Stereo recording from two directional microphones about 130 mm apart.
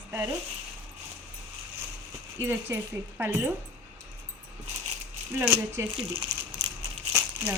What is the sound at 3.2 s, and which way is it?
Speech, 15° right (ahead or behind).